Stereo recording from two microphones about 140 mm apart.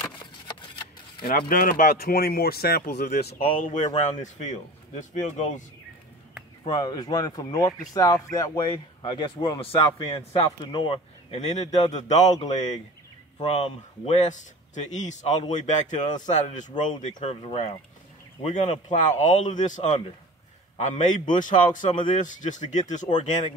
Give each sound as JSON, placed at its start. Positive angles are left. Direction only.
{"t": 1.5, "sound": "speech", "side_deg": 90}
{"t": 3.5, "sound": "speech", "side_deg": 65}
{"t": 6.6, "sound": "speech", "side_deg": 30}
{"t": 12.4, "sound": "speech", "side_deg": 45}
{"t": 17.0, "sound": "speech", "side_deg": 45}